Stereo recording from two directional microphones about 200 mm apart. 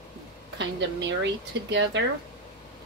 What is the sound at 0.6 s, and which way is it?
Speech, 60° right (ahead or behind).